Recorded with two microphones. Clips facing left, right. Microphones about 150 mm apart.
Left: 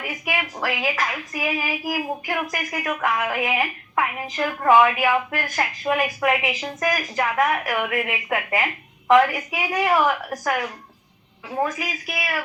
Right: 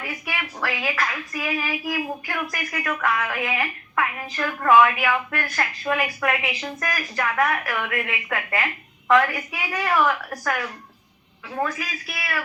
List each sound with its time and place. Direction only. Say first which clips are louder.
0.1 s speech: left 4 dB; 20° left (ahead or behind)